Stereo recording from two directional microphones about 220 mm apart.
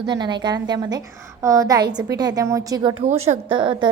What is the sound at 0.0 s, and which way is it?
A woman's voice, 20° right (ahead or behind).